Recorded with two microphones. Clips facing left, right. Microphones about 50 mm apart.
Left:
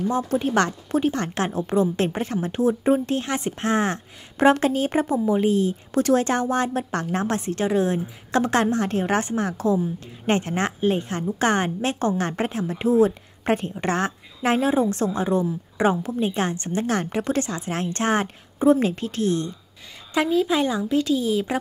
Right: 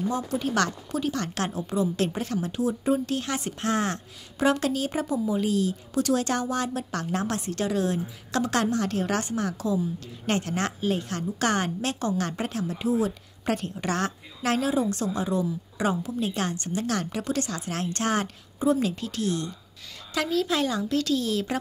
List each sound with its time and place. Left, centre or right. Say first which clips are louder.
0.1 s speech: left 5 dB; left
1.6 s speech: left 6 dB; left
2.0 s a woman's voice: left 3 dB; left
16.2 s a woman's voice: left 4 dB; left
20.2 s a woman's voice: left 5 dB; centre